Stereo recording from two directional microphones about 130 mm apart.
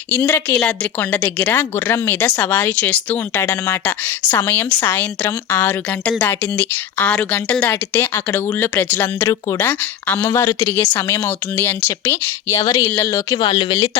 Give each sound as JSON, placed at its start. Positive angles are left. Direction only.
{"t": 0.1, "sound": "a woman's voice", "side_deg": 15}
{"t": 13.5, "sound": "speech", "side_deg": 45}
{"t": 13.7, "sound": "speech", "side_deg": 25}